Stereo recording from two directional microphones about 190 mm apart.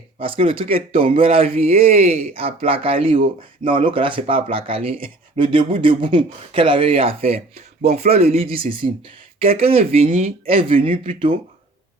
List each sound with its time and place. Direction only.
0.2 s speech: 30° right (ahead or behind)